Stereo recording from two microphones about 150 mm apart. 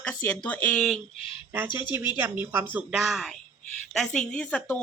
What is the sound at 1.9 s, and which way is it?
A woman's voice, 15° right (ahead or behind).